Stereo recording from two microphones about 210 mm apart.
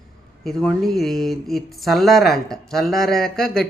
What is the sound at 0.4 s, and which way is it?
Speech, centre (ahead or behind).